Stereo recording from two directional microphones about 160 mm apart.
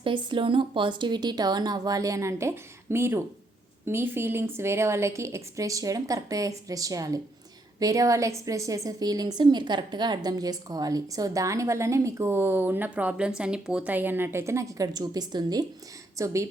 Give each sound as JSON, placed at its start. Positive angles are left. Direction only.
{"t": 0.0, "sound": "a woman's voice", "side_deg": -30}